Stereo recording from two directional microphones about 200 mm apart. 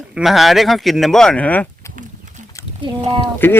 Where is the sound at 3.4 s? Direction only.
10° left (ahead or behind).